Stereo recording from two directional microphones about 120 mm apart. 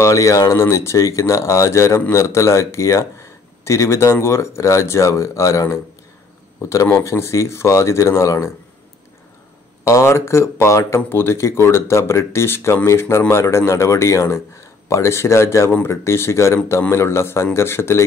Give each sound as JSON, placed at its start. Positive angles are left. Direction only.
{"t": 0.0, "sound": "speech", "side_deg": 25}
{"t": 9.8, "sound": "speech", "side_deg": 25}